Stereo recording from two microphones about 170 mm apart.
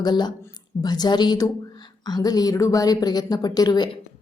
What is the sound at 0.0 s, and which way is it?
A woman's voice, 25° left (ahead or behind).